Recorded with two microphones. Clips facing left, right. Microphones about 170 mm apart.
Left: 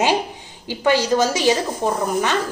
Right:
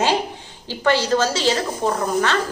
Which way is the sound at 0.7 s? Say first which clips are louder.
Left 1 dB; 15° left (ahead or behind).